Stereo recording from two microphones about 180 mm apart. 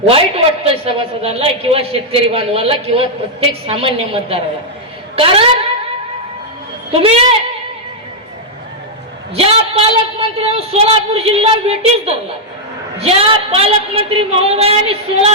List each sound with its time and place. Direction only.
0.1 s a woman's voice: 35° right (ahead or behind)
6.9 s a woman's voice: 35° right (ahead or behind)
9.3 s a woman's voice: 30° right (ahead or behind)